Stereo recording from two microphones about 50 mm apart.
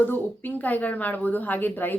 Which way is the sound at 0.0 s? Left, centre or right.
Left.